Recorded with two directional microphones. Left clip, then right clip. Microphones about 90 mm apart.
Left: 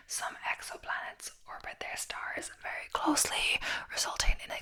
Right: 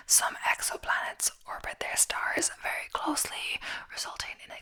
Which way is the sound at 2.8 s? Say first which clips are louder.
Left 4 dB; centre (ahead or behind).